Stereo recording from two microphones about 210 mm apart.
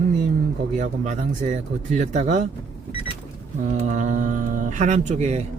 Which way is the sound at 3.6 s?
35° right (ahead or behind).